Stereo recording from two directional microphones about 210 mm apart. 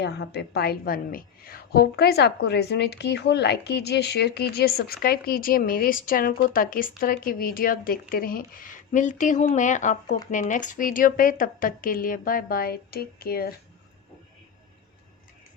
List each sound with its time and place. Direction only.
0.0 s a woman's voice: 50° left (ahead or behind)